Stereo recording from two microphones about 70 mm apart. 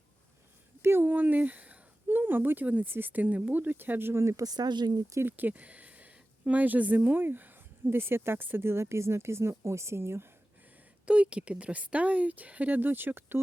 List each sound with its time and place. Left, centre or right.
0.8 s speech: right
1.0 s speech: right
4.4 s speech: right
5.2 s speech: right
11.0 s speech: centre